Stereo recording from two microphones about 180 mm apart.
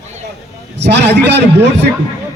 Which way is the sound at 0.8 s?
75° right (ahead or behind).